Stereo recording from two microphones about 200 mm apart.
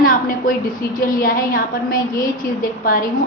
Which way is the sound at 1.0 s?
45° left (ahead or behind).